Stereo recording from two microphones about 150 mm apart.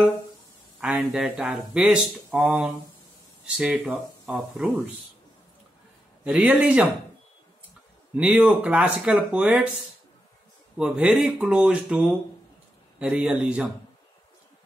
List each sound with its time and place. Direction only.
0.7 s speech: 5° right (ahead or behind)
6.2 s speech: 5° right (ahead or behind)
8.2 s speech: 10° right (ahead or behind)
10.8 s speech: 5° right (ahead or behind)